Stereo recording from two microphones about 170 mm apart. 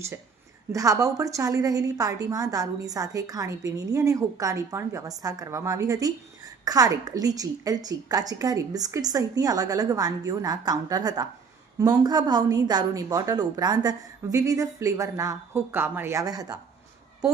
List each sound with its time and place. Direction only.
0.7 s a woman's voice: 20° right (ahead or behind)